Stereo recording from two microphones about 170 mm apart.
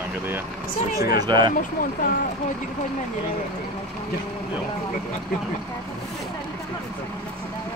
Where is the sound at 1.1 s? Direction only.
25° right (ahead or behind).